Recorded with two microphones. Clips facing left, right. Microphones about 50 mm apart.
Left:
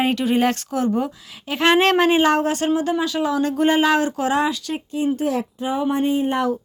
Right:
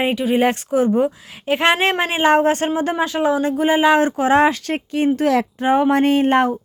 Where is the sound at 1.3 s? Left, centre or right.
Right.